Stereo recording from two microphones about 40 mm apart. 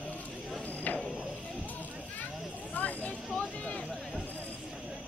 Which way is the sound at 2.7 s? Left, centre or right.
Left.